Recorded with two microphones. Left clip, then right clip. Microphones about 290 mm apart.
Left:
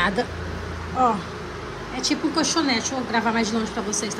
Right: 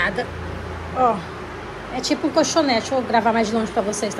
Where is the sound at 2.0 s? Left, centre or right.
Centre.